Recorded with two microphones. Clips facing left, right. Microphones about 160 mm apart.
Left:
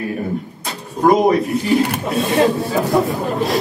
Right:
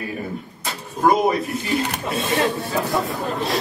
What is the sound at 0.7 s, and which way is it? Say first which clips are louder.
Speech: left 4 dB; centre (ahead or behind).